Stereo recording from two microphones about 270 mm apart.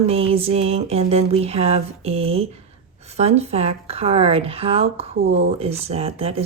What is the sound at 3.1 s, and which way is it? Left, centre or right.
A woman's voice, right.